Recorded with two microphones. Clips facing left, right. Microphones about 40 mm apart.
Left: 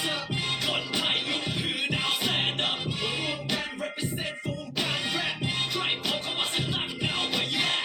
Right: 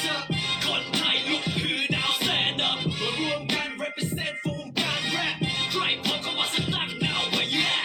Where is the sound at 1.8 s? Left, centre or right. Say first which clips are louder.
Right 1 dB; right.